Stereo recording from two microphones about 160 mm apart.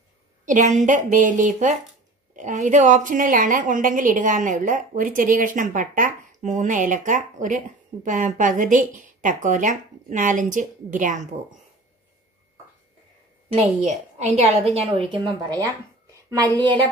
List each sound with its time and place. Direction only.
0.5 s a woman's voice: 50° right (ahead or behind)
13.5 s a woman's voice: 45° right (ahead or behind)
16.5 s a woman's voice: 30° right (ahead or behind)